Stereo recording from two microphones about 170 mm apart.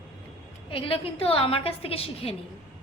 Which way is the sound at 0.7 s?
30° left (ahead or behind).